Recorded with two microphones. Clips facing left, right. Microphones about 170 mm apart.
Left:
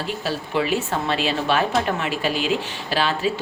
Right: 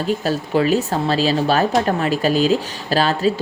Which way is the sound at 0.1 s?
40° right (ahead or behind).